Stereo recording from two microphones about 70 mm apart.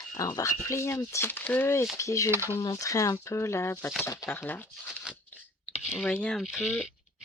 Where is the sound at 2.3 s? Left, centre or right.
Right.